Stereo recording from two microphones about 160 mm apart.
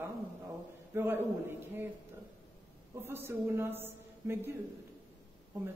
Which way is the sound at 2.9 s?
15° right (ahead or behind).